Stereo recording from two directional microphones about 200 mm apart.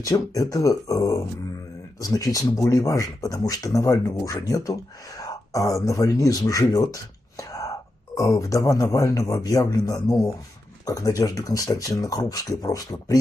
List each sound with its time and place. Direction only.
0.0 s speech: 15° left (ahead or behind)